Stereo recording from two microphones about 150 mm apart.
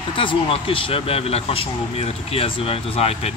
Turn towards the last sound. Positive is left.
turn(degrees=40)  # may be behind; listen again after turning